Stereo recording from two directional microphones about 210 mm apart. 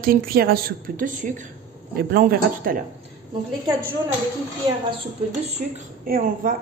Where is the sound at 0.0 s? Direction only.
45° right (ahead or behind).